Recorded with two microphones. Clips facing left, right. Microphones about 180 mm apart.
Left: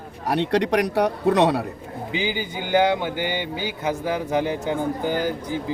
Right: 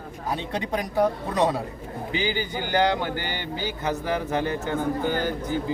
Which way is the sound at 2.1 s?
15° left (ahead or behind).